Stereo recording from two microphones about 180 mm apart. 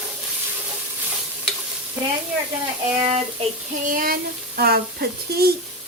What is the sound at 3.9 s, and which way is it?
Speech, 50° right (ahead or behind).